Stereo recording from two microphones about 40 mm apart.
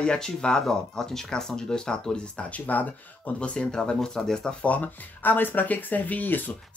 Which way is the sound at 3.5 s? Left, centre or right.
Left.